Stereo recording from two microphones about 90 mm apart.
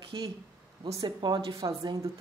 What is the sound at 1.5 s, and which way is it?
Speech, 40° right (ahead or behind).